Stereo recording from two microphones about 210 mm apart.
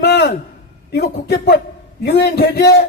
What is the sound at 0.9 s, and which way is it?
A man's voice, 50° left (ahead or behind).